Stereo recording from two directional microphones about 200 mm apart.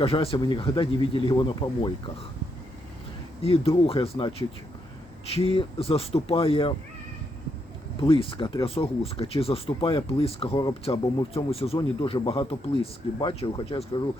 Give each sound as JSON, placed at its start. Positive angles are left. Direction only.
{"t": 0.0, "sound": "speech", "side_deg": 30}
{"t": 3.4, "sound": "speech", "side_deg": 30}
{"t": 5.5, "sound": "speech", "side_deg": 30}
{"t": 8.0, "sound": "speech", "side_deg": 25}